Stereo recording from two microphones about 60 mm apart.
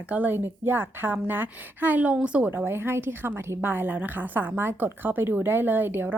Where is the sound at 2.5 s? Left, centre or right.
Right.